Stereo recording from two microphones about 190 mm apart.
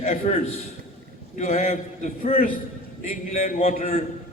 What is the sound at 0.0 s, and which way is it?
A man's voice, 40° left (ahead or behind).